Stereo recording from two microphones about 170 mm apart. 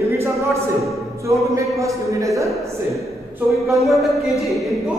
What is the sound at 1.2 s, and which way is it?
A man's voice, 20° right (ahead or behind).